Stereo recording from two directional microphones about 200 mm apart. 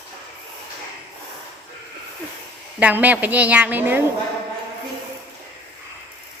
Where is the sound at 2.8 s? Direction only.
10° right (ahead or behind).